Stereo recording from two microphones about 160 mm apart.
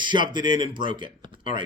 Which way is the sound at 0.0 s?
30° right (ahead or behind).